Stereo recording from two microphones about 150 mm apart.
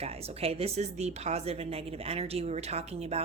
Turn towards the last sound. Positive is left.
turn(degrees=-45)  # may be behind; listen again after turning